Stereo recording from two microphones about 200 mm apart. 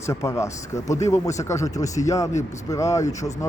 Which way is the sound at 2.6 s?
15° left (ahead or behind).